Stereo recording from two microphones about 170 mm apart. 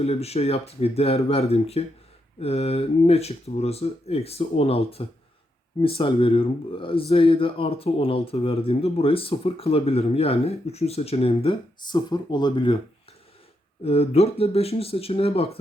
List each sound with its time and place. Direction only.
0.0 s speech: 35° left (ahead or behind)
13.8 s speech: 35° left (ahead or behind)